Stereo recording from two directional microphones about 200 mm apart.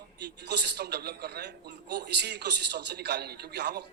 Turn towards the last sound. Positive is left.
turn(degrees=-55)  # may be behind; listen again after turning